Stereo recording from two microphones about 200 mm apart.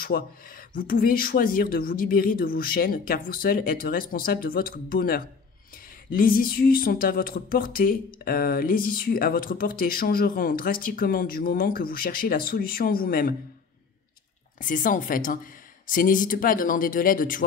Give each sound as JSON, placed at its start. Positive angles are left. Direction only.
{"t": 0.0, "sound": "speech", "side_deg": 45}
{"t": 14.6, "sound": "speech", "side_deg": 40}